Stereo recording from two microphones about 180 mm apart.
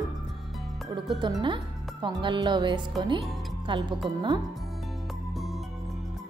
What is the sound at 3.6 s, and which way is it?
Speech, 25° right (ahead or behind).